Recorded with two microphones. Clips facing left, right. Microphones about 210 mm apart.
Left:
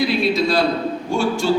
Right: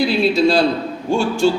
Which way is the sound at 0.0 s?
30° right (ahead or behind).